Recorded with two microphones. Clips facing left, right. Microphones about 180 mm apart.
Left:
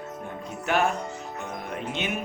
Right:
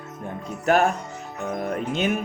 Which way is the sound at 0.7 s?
45° right (ahead or behind).